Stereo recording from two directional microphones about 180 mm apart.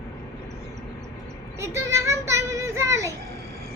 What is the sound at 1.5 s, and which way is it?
A child's voice, 15° right (ahead or behind).